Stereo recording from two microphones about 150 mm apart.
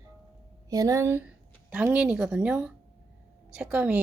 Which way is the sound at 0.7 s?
20° right (ahead or behind).